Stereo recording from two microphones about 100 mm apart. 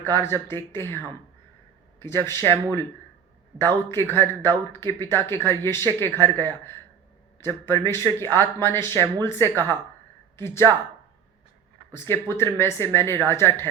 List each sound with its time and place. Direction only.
0.0 s speech: 25° left (ahead or behind)
2.0 s speech: 25° left (ahead or behind)
3.6 s speech: 25° left (ahead or behind)
11.9 s speech: 25° left (ahead or behind)